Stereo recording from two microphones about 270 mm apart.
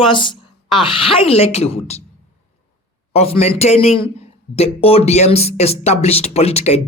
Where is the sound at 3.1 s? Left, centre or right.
Left.